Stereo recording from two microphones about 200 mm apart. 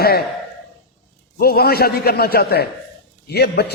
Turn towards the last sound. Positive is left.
turn(degrees=55)  # may be behind; listen again after turning